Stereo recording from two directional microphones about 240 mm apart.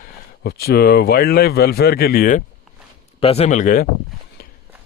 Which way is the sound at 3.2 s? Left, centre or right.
Left.